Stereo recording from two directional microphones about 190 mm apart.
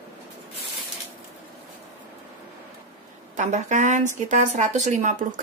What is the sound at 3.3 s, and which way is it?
Speech, 40° right (ahead or behind).